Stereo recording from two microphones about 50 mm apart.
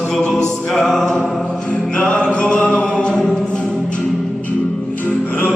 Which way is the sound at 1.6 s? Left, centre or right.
Left.